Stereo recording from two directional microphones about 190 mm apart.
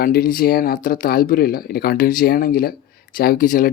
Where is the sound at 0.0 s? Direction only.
50° left (ahead or behind).